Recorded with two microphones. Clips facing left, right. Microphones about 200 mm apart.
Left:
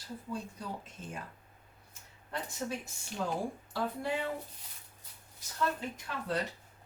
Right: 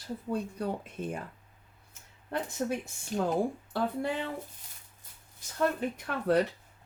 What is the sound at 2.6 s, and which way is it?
Speech, 55° right (ahead or behind).